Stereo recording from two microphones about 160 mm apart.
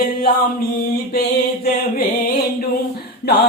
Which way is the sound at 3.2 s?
90° left.